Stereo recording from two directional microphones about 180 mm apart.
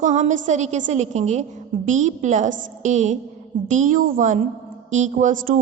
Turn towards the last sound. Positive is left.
turn(degrees=-50)  # may be behind; listen again after turning